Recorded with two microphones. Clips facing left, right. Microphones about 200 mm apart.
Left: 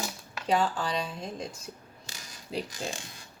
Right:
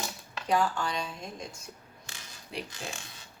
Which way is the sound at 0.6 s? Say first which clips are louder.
Left 1 dB; 35° left (ahead or behind).